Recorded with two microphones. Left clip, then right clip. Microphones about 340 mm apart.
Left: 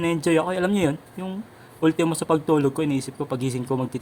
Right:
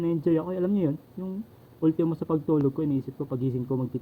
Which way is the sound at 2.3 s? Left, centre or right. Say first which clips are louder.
Left 4 dB; centre.